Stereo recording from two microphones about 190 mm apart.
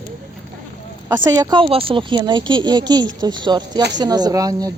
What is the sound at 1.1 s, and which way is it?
Speech, 20° right (ahead or behind).